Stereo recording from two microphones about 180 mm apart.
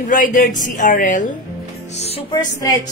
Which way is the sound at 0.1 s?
45° left (ahead or behind).